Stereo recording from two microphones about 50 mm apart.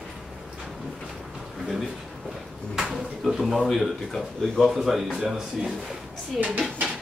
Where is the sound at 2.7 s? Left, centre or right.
Centre.